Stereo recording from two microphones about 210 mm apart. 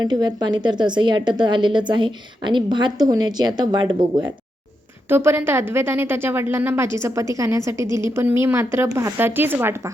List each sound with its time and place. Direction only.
0.0 s a woman's voice: 20° right (ahead or behind)